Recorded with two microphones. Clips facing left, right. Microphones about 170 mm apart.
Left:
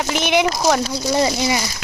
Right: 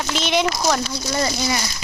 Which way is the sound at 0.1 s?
15° left (ahead or behind).